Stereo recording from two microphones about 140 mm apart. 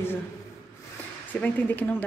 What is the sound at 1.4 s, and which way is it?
Speech, 15° left (ahead or behind).